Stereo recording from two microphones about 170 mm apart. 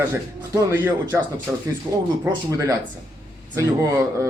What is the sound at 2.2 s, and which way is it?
A man's voice, 20° right (ahead or behind).